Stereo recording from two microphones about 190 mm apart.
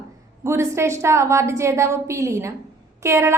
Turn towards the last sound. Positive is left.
turn(degrees=-15)  # may be behind; listen again after turning